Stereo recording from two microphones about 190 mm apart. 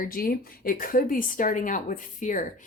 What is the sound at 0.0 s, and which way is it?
Speech, 50° left (ahead or behind).